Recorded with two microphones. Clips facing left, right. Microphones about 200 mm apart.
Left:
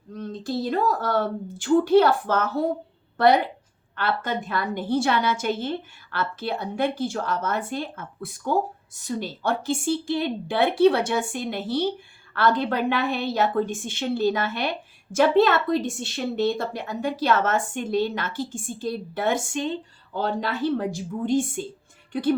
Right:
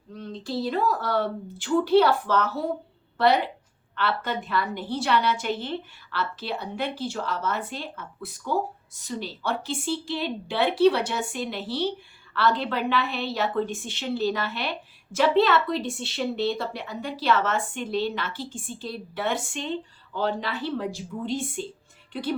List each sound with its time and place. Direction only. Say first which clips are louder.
0.1 s a woman's voice: left 3 dB; 45° left (ahead or behind)